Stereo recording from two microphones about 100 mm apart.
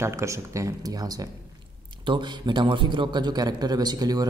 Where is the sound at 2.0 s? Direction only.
50° right (ahead or behind).